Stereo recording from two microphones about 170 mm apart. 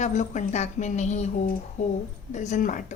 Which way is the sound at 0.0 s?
45° left (ahead or behind).